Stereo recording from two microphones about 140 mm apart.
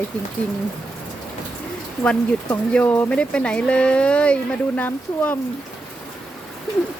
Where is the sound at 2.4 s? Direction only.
10° left (ahead or behind).